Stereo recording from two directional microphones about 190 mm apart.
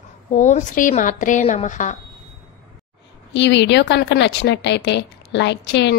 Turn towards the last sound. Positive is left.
turn(degrees=65)  # may be behind; listen again after turning